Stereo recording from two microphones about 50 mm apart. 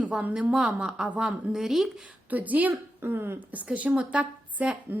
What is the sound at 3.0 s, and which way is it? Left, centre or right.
Speech, right.